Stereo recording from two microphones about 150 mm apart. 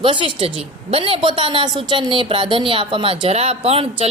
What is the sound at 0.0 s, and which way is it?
A woman's voice, 35° right (ahead or behind).